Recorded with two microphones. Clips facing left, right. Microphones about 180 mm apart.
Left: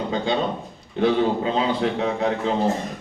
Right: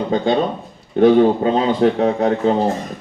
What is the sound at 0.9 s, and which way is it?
A man's voice, 45° right (ahead or behind).